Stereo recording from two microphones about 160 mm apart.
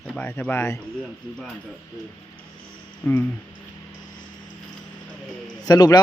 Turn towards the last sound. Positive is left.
turn(degrees=25)  # may be behind; listen again after turning